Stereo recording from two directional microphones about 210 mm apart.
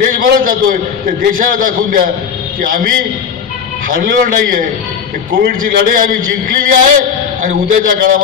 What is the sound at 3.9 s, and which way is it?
A man's voice, 40° right (ahead or behind).